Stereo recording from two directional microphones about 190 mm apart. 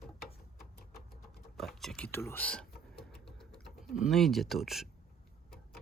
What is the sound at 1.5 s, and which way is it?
Speech, centre (ahead or behind).